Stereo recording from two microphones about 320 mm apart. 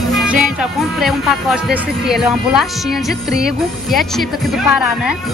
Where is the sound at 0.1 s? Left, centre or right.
Centre.